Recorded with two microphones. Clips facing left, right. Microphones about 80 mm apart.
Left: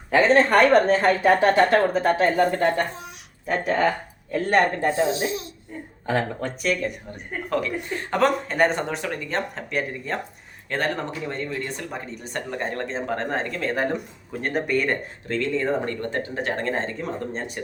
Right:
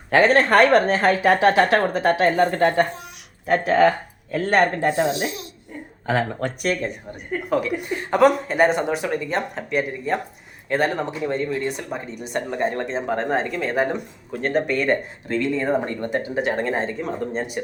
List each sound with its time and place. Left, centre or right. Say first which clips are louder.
0.1 s a woman's voice: right 1 dB; right
3.4 s speech: right 5 dB; right
5.0 s speech: right 1 dB; left
8.1 s speech: right 5 dB; centre
14.4 s speech: right 3 dB; centre
15.3 s speech: right 2 dB; centre